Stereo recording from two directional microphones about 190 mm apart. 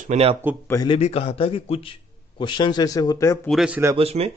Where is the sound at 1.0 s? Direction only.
35° left (ahead or behind); by 3.4 s 15° left (ahead or behind).